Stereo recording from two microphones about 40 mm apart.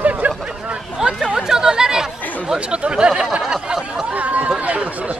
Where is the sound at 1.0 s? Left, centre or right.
Centre.